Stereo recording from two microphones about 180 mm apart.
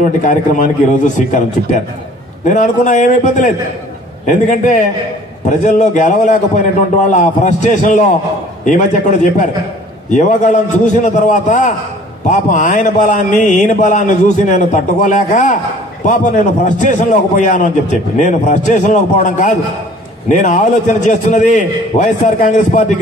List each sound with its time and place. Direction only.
0.0 s speech: 45° left (ahead or behind)
16.6 s speech: 45° left (ahead or behind)